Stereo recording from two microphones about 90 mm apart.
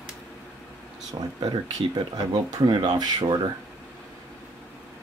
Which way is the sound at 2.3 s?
55° right (ahead or behind).